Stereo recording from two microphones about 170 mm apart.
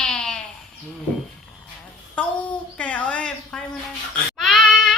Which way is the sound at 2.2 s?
5° left (ahead or behind).